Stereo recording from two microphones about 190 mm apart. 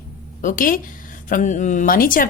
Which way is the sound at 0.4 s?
45° left (ahead or behind).